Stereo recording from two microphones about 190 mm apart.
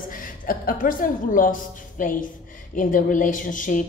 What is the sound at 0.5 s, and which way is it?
A woman's voice, 45° left (ahead or behind).